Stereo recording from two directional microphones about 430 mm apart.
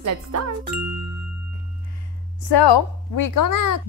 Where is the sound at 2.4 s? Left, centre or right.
Left.